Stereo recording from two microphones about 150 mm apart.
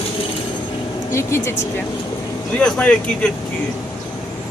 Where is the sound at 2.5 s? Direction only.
5° left (ahead or behind).